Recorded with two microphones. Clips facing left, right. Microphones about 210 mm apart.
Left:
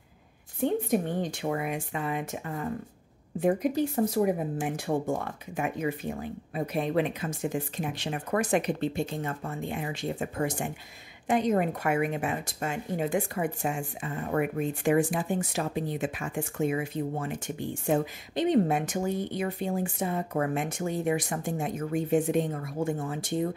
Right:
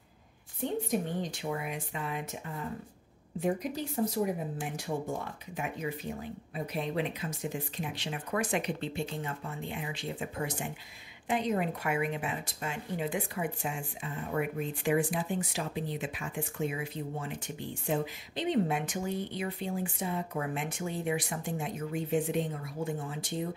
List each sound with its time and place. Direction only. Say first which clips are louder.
0.6 s speech: left 5 dB; 55° left (ahead or behind)
6.5 s a woman's voice: left 6 dB; 55° left (ahead or behind)